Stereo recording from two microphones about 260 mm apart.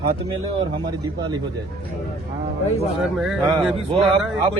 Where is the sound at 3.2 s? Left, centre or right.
Centre.